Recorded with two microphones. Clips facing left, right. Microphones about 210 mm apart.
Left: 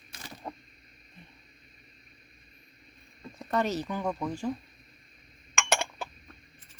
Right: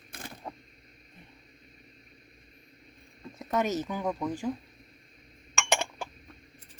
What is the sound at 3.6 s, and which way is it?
Speech, 20° right (ahead or behind).